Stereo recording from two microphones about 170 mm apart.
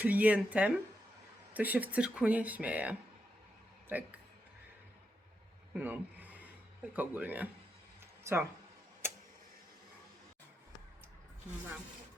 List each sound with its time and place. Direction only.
0.0 s speech: 10° right (ahead or behind)
3.9 s speech: 10° right (ahead or behind)
5.8 s a sound: 10° right (ahead or behind)
6.9 s speech: 10° right (ahead or behind)